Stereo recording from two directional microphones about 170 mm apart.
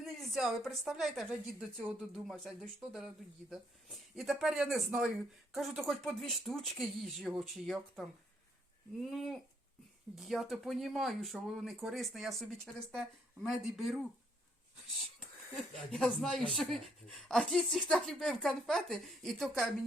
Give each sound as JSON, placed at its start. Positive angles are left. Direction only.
{"t": 0.0, "sound": "speech", "side_deg": 0}
{"t": 9.0, "sound": "speech", "side_deg": 0}
{"t": 15.5, "sound": "speech", "side_deg": 0}